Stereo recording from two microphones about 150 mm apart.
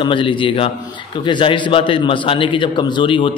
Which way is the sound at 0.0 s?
35° left (ahead or behind).